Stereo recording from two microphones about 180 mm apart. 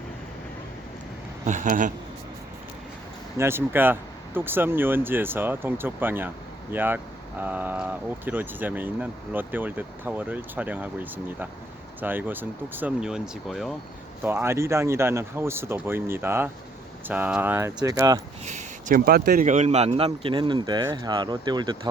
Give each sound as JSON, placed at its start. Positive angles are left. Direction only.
{"t": 1.5, "sound": "speech", "side_deg": -45}
{"t": 3.3, "sound": "speech", "side_deg": -15}
{"t": 14.3, "sound": "speech", "side_deg": -15}
{"t": 18.4, "sound": "speech", "side_deg": -45}